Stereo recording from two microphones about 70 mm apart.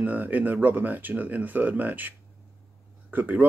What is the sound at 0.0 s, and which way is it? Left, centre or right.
Speech, right.